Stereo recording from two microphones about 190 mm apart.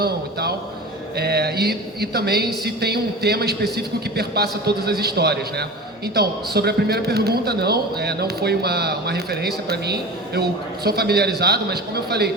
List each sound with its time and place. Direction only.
0.0 s a man's voice: 55° right (ahead or behind)